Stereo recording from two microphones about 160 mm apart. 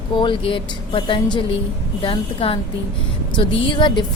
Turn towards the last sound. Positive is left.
turn(degrees=30)  # may be behind; listen again after turning